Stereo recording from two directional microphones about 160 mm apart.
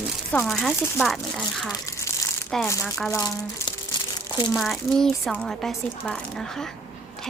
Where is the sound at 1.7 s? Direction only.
20° left (ahead or behind).